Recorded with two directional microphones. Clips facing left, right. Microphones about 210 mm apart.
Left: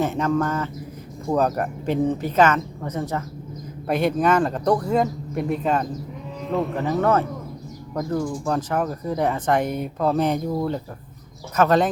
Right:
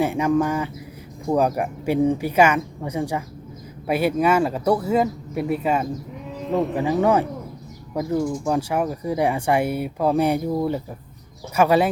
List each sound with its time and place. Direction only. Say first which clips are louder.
0.0 s speech: right 2 dB; 10° right (ahead or behind)